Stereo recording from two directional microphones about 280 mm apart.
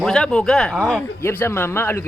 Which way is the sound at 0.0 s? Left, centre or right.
Centre.